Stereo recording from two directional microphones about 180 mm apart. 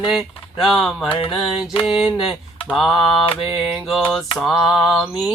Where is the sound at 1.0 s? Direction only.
30° left (ahead or behind).